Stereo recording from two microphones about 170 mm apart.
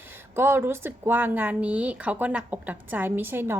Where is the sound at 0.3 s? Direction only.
15° right (ahead or behind).